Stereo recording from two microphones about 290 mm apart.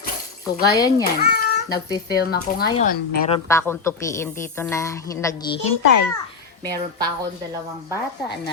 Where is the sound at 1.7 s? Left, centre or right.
Centre.